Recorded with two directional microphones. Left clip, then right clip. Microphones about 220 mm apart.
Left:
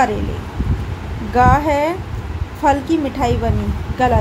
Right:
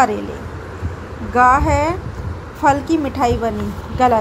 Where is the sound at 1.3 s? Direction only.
10° right (ahead or behind).